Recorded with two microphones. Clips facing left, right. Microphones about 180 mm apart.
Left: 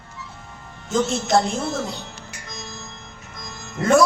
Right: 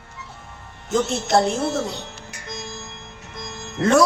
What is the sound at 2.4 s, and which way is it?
Music, 70° right (ahead or behind).